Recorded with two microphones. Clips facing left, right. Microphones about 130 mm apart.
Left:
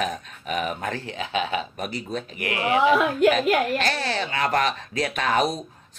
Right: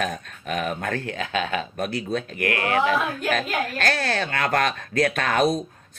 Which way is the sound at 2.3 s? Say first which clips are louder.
Left 1 dB; 15° left (ahead or behind).